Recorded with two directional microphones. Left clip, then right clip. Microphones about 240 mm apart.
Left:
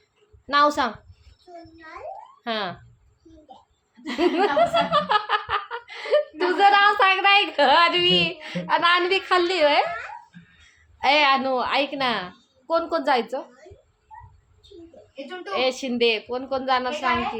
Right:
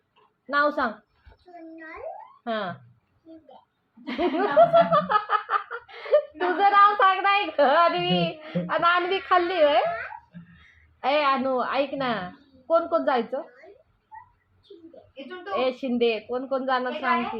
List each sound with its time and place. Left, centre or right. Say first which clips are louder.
0.5 s a woman's voice: left 4 dB; left
2.4 s speech: left 2 dB; centre
4.4 s speech: right 4 dB; centre
6.4 s female singing: left 2 dB; centre
11.0 s female singing: left 4 dB; centre
15.4 s female singing: left 2 dB; centre